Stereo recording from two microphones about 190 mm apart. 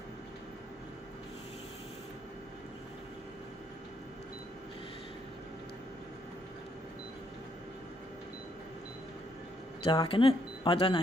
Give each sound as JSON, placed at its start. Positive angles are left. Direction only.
{"t": 9.8, "sound": "speech", "side_deg": 25}